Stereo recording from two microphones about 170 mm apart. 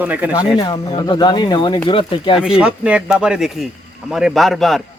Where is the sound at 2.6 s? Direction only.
5° right (ahead or behind).